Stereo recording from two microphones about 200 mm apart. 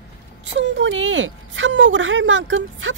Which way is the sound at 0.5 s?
65° right (ahead or behind).